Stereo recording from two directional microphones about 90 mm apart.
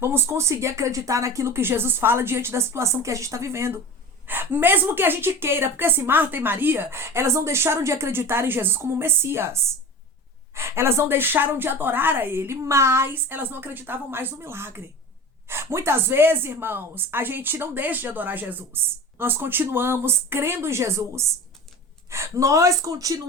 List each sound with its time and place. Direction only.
0.0 s a woman's voice: 30° right (ahead or behind)